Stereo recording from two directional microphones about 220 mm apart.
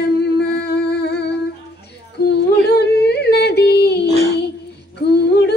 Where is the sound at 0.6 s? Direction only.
50° left (ahead or behind).